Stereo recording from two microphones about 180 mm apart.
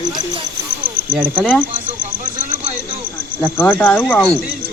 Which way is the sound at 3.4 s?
10° left (ahead or behind).